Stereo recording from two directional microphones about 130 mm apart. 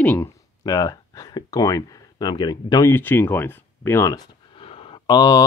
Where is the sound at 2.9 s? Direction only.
15° left (ahead or behind).